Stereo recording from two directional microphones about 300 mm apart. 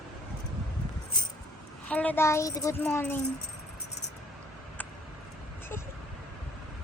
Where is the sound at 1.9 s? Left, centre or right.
Centre.